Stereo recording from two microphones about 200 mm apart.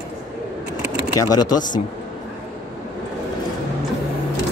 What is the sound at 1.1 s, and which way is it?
Speech, 20° left (ahead or behind).